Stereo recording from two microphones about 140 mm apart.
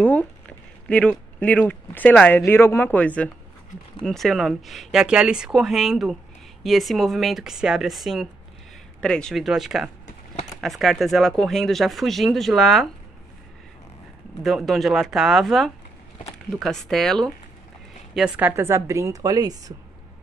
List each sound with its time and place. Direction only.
0.0 s speech: 10° left (ahead or behind)
14.4 s speech: centre (ahead or behind)
18.1 s speech: 5° right (ahead or behind); by 19.7 s 25° right (ahead or behind)